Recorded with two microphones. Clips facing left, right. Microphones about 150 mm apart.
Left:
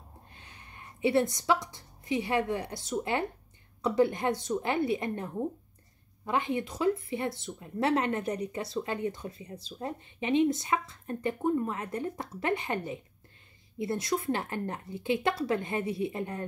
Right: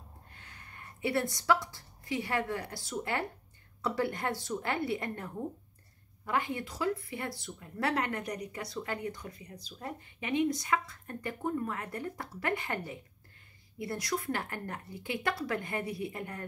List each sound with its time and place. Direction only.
0.3 s speech: 20° left (ahead or behind)